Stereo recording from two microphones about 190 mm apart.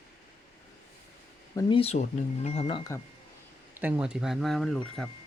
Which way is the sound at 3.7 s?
10° right (ahead or behind).